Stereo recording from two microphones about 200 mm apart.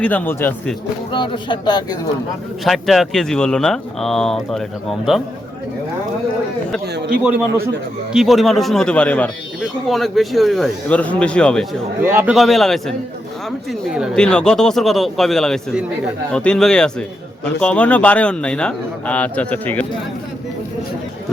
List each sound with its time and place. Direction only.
0.0 s a man's voice: 10° left (ahead or behind)
1.1 s speech: 25° left (ahead or behind)
2.6 s speech: centre (ahead or behind)
6.8 s a sound: 55° right (ahead or behind)
8.1 s speech: centre (ahead or behind)
12.0 s a man's voice: 10° right (ahead or behind); by 19.9 s 5° left (ahead or behind)